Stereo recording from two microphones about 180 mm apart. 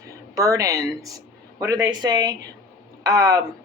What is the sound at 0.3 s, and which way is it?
Speech, 20° right (ahead or behind).